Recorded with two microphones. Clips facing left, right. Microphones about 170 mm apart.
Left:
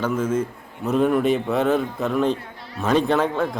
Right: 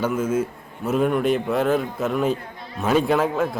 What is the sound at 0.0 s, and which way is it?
A man's voice, 10° right (ahead or behind).